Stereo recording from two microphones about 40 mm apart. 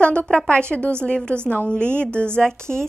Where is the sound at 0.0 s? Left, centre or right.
Left.